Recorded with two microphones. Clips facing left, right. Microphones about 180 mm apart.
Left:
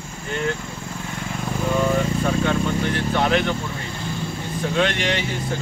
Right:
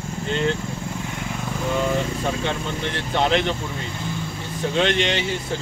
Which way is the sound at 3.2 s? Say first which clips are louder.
Right 1 dB; 25° right (ahead or behind).